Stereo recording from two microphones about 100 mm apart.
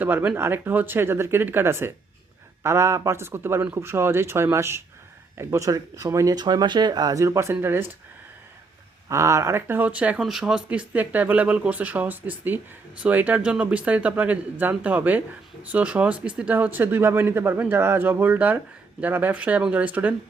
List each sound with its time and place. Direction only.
0.0 s speech: 20° right (ahead or behind)
9.0 s speech: 30° right (ahead or behind); by 20.1 s 15° right (ahead or behind)